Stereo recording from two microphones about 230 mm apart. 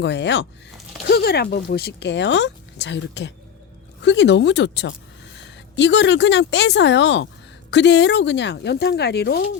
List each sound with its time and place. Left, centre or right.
0.0 s speech: left